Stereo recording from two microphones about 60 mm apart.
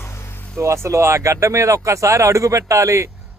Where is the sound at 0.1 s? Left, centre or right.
Left.